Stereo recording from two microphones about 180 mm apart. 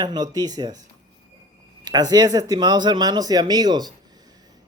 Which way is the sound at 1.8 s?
20° right (ahead or behind).